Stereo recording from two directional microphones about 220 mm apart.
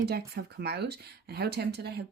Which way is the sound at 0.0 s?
45° right (ahead or behind).